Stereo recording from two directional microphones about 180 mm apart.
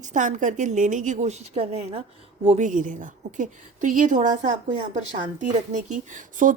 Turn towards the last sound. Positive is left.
turn(degrees=-45)  # may be behind; listen again after turning